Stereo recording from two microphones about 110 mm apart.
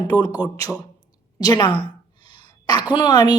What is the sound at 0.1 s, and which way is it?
Speech, 40° left (ahead or behind).